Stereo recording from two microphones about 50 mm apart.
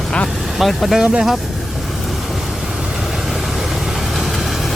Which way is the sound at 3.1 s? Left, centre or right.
Centre.